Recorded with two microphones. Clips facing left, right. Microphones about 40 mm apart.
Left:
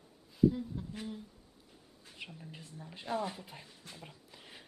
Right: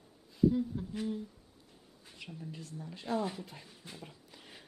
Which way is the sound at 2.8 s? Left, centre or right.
Centre.